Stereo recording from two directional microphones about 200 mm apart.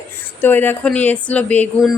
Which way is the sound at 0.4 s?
10° left (ahead or behind).